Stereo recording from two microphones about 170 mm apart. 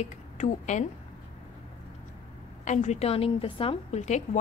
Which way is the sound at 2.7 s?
40° left (ahead or behind).